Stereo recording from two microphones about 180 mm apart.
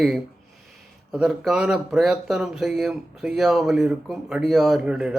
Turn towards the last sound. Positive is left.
turn(degrees=-5)  # may be behind; listen again after turning